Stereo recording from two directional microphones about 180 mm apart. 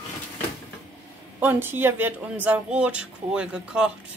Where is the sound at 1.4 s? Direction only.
10° right (ahead or behind).